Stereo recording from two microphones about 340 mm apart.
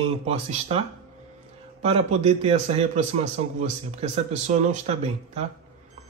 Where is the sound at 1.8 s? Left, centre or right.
Centre.